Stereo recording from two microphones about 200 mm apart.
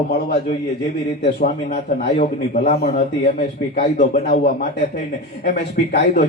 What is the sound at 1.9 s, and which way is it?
Speech, 40° left (ahead or behind).